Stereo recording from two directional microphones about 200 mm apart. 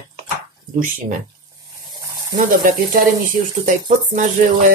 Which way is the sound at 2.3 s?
40° right (ahead or behind).